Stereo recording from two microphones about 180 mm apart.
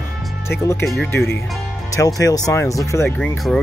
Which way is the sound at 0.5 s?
15° left (ahead or behind).